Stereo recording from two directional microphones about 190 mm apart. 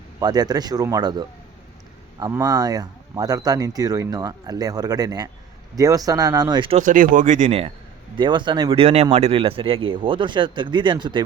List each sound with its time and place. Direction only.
0.2 s speech: 20° right (ahead or behind)
6.7 s speech: 45° right (ahead or behind)
8.1 s speech: 25° right (ahead or behind)